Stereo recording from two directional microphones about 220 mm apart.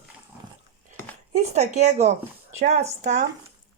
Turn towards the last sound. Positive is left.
turn(degrees=-35)  # may be behind; listen again after turning